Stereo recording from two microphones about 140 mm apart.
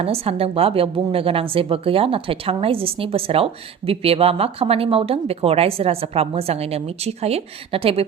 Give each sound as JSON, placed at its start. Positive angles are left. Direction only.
{"t": 0.0, "sound": "a woman's voice", "side_deg": -45}